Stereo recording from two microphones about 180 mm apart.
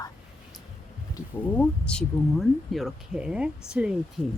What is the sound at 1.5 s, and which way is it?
Speech, 5° left (ahead or behind).